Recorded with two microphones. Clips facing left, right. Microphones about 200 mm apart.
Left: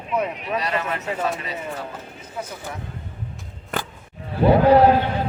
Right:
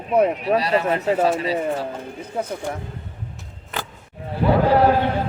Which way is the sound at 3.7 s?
50° left (ahead or behind).